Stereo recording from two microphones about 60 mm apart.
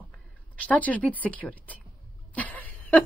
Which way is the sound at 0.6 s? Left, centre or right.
Left.